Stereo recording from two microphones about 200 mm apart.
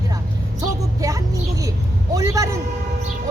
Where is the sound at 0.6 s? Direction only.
15° right (ahead or behind).